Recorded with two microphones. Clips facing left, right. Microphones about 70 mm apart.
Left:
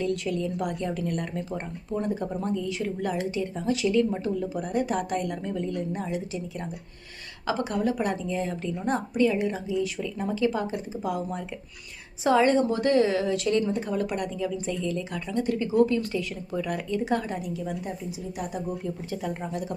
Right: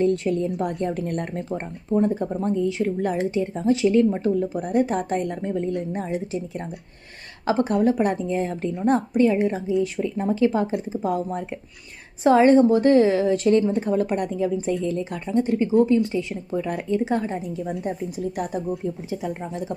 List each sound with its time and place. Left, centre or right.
0.0 s a woman's voice: right
4.6 s a woman's voice: right
4.9 s a woman's voice: right
18.3 s speech: right
18.7 s speech: centre
19.3 s a woman's voice: right